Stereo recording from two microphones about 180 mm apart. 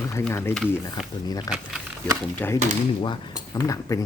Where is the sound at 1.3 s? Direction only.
20° left (ahead or behind).